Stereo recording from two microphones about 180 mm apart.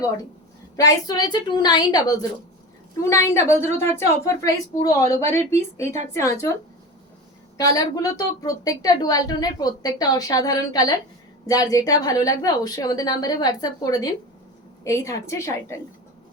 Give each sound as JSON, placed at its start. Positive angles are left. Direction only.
{"t": 0.8, "sound": "a woman's voice", "side_deg": 20}
{"t": 7.6, "sound": "a woman's voice", "side_deg": 20}